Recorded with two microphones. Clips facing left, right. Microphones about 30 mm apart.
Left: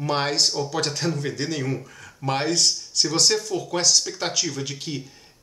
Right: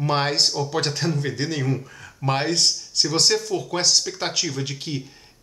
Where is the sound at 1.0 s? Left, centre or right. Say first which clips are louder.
Right 1 dB; centre.